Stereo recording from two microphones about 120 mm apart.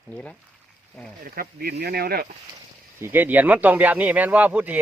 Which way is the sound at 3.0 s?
15° right (ahead or behind).